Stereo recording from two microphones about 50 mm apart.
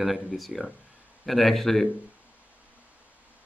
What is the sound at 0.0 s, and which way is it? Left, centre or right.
A man's voice, centre.